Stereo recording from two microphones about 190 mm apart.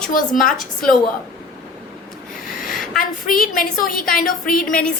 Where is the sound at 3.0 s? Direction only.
45° left (ahead or behind).